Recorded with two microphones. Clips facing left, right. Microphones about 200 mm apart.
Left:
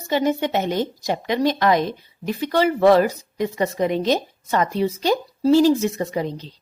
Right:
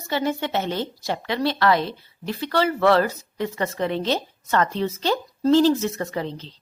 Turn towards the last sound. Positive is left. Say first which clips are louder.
# left 3 dB
turn(degrees=10)  # may be behind; listen again after turning